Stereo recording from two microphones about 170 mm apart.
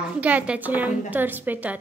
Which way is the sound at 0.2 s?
10° right (ahead or behind).